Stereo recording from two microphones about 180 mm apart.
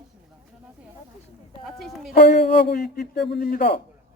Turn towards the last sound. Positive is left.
turn(degrees=55)  # may be behind; listen again after turning